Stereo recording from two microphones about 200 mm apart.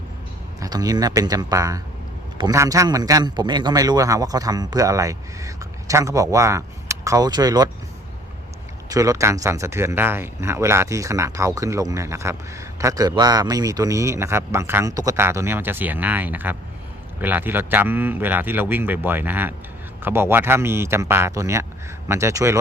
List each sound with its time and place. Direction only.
0.6 s speech: 20° right (ahead or behind)
8.9 s speech: 15° right (ahead or behind)